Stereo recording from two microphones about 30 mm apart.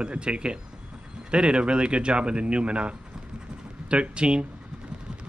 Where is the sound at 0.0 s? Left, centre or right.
Right.